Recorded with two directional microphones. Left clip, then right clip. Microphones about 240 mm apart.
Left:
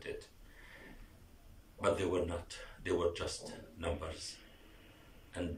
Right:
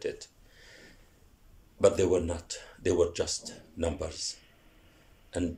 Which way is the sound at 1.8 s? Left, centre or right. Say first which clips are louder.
Right 9 dB; right.